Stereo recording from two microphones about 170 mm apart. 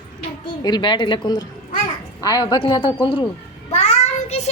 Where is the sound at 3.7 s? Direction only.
45° left (ahead or behind).